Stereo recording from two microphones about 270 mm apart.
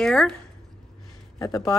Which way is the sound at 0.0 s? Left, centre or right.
Centre.